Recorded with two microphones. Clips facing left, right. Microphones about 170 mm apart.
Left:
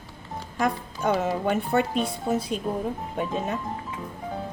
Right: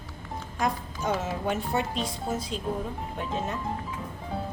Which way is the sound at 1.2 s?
60° left (ahead or behind).